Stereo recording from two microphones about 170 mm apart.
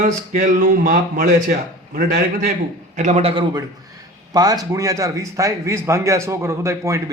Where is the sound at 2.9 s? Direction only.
45° right (ahead or behind).